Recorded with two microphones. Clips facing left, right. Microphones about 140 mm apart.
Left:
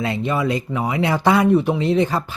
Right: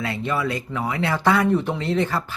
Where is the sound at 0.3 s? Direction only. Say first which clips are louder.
Left 3 dB; 20° left (ahead or behind).